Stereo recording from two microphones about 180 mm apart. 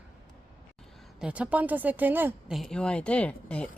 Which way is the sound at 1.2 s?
5° right (ahead or behind).